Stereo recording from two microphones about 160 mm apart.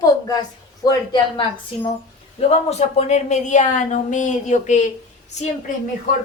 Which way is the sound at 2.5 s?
40° left (ahead or behind).